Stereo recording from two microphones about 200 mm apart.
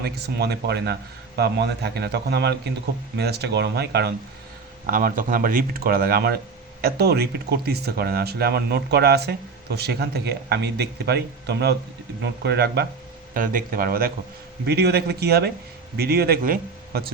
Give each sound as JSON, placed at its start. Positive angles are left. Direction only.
{"t": 0.0, "sound": "speech", "side_deg": -55}
{"t": 4.9, "sound": "speech", "side_deg": -45}
{"t": 13.3, "sound": "speech", "side_deg": -45}